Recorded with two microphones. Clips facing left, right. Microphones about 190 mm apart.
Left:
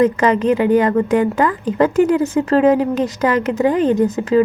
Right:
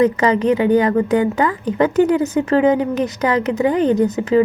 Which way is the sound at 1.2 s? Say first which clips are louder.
Left 1 dB; 25° right (ahead or behind).